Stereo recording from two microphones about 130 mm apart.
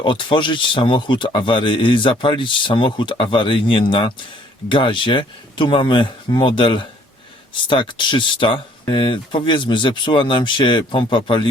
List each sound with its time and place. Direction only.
0.0 s a man's voice: 40° left (ahead or behind)